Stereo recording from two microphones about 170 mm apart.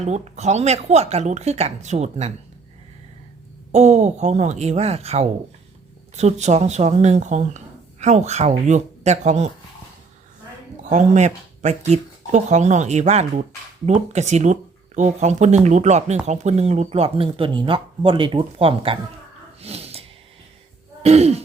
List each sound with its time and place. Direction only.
0.0 s speech: 40° right (ahead or behind)
3.7 s speech: 40° right (ahead or behind)
10.8 s speech: 45° right (ahead or behind)
19.6 s snort: 35° right (ahead or behind)
21.0 s speech: 40° right (ahead or behind)